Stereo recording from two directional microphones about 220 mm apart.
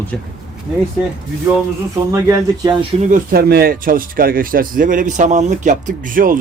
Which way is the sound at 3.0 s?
35° right (ahead or behind).